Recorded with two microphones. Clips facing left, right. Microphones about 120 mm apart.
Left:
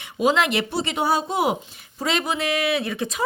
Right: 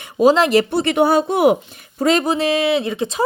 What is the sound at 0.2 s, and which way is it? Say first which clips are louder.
Speech: right 7 dB; 35° right (ahead or behind).